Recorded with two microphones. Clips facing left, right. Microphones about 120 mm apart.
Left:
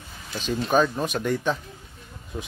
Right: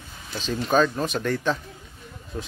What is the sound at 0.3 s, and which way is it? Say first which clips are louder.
Speech: even; 10° left (ahead or behind).